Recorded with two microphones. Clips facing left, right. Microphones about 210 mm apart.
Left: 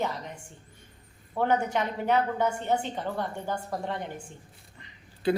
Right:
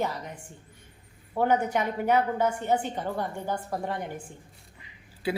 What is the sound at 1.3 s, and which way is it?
A woman's voice, 10° right (ahead or behind).